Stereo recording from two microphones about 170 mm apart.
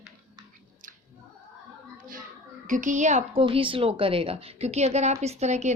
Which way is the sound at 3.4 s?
30° right (ahead or behind).